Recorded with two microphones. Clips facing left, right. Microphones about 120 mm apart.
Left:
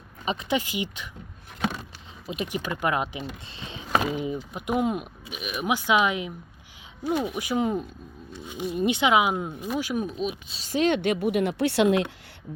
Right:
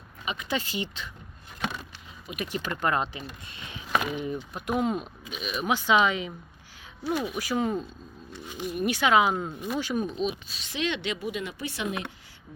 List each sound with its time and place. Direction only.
0.4 s speech: 15° left (ahead or behind)
2.2 s speech: 25° left (ahead or behind)
2.5 s speech: 10° left (ahead or behind)
3.5 s speech: 25° left (ahead or behind)
4.1 s speech: 15° left (ahead or behind)
7.0 s speech: 20° left (ahead or behind); by 10.3 s 5° left (ahead or behind)
10.5 s speech: 40° left (ahead or behind); by 12.0 s 75° left (ahead or behind)